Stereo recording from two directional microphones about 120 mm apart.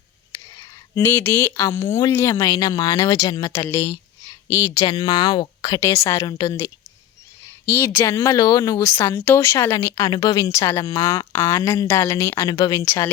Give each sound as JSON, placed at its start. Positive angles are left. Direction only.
{"t": 0.6, "sound": "speech", "side_deg": 25}
{"t": 5.8, "sound": "a woman's voice", "side_deg": 25}